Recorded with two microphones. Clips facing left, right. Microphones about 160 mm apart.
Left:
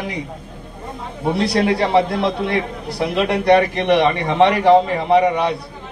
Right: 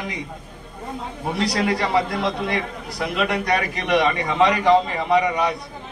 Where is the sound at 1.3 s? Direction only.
30° left (ahead or behind).